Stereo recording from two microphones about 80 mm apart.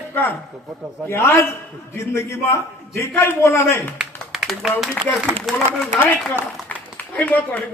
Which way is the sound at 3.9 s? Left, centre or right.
Centre.